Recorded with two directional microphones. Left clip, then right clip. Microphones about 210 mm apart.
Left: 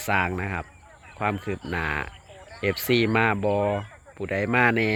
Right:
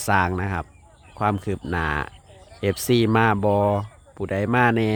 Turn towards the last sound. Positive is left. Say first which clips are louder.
# right 1 dB
turn(degrees=-15)  # may be behind; listen again after turning